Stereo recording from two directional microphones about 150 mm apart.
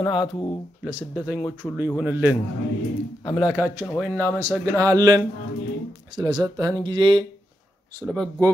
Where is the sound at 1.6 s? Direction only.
20° left (ahead or behind).